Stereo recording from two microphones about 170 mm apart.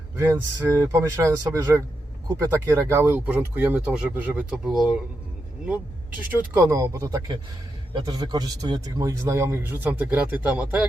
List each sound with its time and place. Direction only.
0.2 s a man's voice: 15° right (ahead or behind)
6.5 s a man's voice: 15° right (ahead or behind)